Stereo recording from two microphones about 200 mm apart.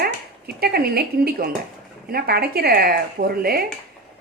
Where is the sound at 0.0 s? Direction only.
50° right (ahead or behind).